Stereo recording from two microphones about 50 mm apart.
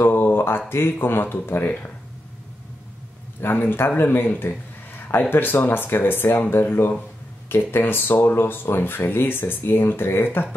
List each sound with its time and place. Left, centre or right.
0.0 s speech: left
3.3 s a man's voice: left